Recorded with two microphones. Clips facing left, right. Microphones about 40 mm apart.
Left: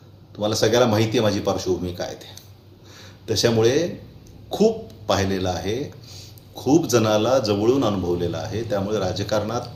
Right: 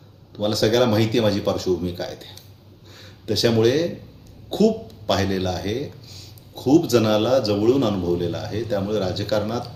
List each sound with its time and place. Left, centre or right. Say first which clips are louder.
0.3 s speech: left 1 dB; centre
3.2 s speech: even; centre